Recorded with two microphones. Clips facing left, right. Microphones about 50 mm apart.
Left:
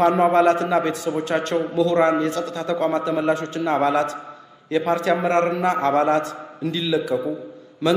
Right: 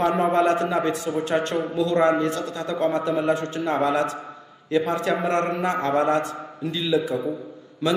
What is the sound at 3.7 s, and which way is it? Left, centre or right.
Speech, centre.